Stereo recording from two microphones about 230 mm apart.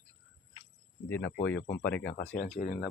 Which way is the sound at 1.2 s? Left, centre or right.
Left.